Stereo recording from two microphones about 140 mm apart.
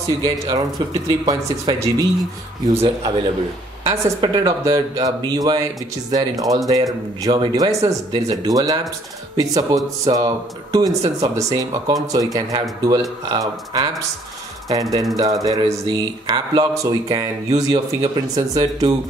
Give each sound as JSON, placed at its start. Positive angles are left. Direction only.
{"t": 0.2, "sound": "speech", "side_deg": -25}
{"t": 3.9, "sound": "speech", "side_deg": -30}